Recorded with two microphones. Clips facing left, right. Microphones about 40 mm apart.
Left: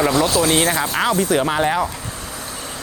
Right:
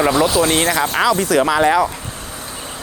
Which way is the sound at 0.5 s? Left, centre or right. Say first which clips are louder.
Right 2 dB; right.